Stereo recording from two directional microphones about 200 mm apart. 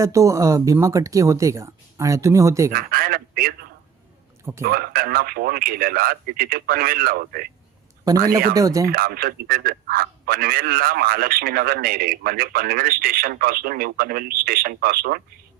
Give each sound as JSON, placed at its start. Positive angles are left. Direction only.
{"t": 0.0, "sound": "speech", "side_deg": -15}
{"t": 2.7, "sound": "a man's voice", "side_deg": -45}
{"t": 8.0, "sound": "speech", "side_deg": -15}
{"t": 8.9, "sound": "a man's voice", "side_deg": -50}